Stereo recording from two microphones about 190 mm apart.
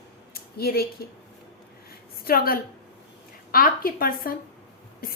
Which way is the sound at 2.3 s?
50° left (ahead or behind).